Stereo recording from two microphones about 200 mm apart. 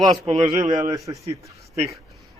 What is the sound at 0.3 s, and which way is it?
Speech, 20° right (ahead or behind).